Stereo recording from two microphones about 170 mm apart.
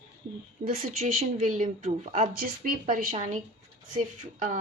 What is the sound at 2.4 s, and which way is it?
Speech, 55° right (ahead or behind).